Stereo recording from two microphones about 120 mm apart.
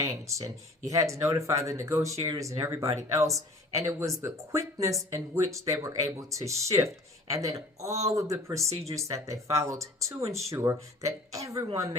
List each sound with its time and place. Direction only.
0.0 s speech: 25° right (ahead or behind)